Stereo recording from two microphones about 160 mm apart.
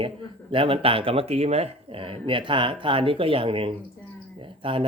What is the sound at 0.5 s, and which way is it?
Speech, 35° right (ahead or behind).